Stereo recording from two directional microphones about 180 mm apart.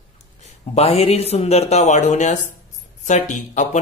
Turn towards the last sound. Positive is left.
turn(degrees=45)  # may be behind; listen again after turning